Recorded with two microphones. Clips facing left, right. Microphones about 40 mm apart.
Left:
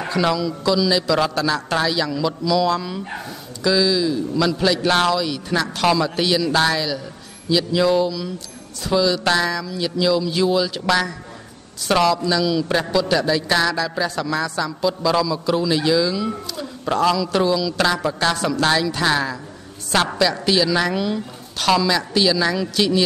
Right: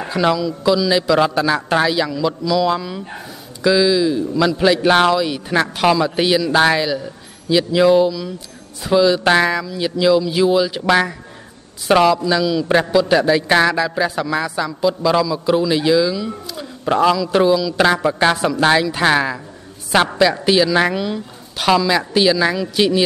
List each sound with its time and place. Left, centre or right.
0.0 s speech: centre
20.9 s speech: centre